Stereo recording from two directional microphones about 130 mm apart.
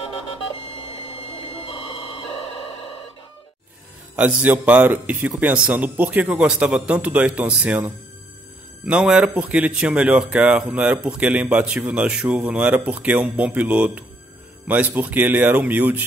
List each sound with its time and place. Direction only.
1.4 s music: 45° left (ahead or behind)
4.2 s speech: 10° right (ahead or behind)